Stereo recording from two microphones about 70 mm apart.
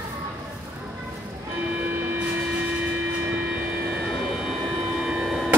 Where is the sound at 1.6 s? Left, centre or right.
Right.